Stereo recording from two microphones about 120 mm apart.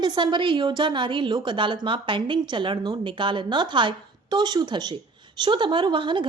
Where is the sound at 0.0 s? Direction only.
40° right (ahead or behind).